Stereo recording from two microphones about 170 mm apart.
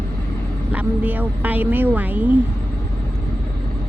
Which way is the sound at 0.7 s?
10° right (ahead or behind).